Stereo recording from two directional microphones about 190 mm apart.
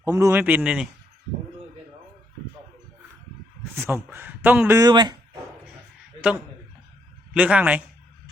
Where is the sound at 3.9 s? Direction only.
10° right (ahead or behind).